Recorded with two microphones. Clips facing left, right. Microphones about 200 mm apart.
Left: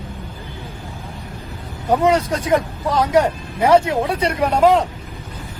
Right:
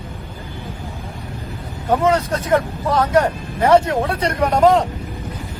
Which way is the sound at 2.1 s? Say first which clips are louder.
Left 1 dB; 10° left (ahead or behind).